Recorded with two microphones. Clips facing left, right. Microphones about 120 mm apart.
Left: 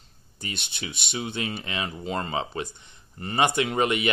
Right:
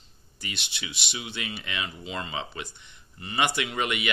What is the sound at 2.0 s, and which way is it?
Speech, 45° left (ahead or behind).